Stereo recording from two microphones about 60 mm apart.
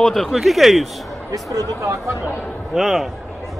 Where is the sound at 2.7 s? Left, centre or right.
Centre.